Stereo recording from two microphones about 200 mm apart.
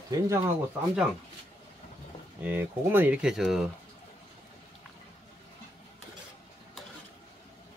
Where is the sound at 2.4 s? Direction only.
10° right (ahead or behind).